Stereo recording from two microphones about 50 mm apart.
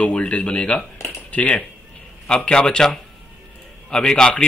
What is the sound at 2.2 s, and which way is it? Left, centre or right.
Speech, centre.